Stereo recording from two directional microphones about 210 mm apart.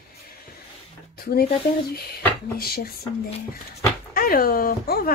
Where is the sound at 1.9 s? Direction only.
45° left (ahead or behind).